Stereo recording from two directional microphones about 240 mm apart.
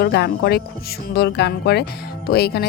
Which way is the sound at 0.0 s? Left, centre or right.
Left.